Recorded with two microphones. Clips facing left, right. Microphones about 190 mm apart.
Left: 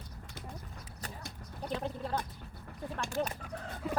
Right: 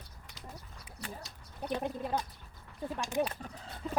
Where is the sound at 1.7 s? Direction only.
15° right (ahead or behind).